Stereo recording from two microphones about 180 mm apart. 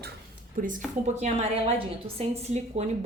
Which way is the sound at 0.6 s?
50° right (ahead or behind).